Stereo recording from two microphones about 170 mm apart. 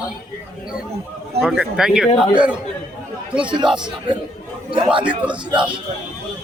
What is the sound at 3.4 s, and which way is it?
Speech, 25° right (ahead or behind).